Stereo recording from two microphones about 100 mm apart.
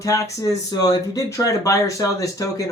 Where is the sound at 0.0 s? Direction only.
35° left (ahead or behind).